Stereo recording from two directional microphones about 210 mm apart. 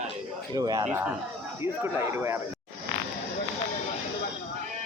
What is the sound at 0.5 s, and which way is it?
Speech, 15° right (ahead or behind).